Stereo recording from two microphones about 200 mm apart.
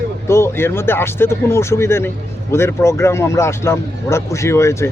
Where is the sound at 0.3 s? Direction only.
15° left (ahead or behind).